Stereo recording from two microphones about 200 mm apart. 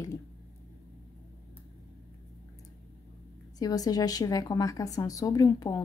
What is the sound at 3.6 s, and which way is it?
A woman's voice, 20° left (ahead or behind).